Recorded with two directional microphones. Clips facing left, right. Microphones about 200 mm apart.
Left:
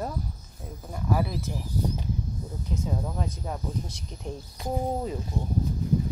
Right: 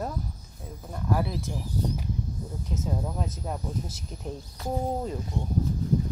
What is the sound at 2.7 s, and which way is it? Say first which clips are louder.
Speech: even; centre (ahead or behind).